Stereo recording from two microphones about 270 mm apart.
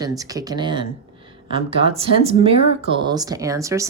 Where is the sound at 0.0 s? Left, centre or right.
Centre.